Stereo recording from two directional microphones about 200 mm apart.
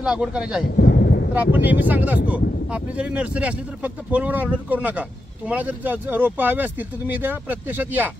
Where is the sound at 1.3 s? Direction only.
10° right (ahead or behind).